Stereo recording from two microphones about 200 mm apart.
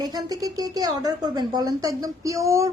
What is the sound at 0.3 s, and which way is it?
Speech, 15° right (ahead or behind).